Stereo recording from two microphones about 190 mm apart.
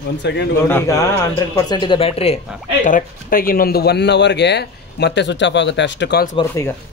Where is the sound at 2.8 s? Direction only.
45° left (ahead or behind); by 6.3 s 65° left (ahead or behind).